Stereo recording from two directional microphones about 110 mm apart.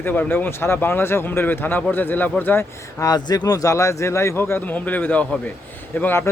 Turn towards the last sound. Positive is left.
turn(degrees=15)  # may be behind; listen again after turning